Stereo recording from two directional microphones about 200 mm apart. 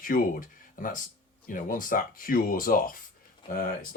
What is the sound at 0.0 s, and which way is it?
Speech, 45° left (ahead or behind).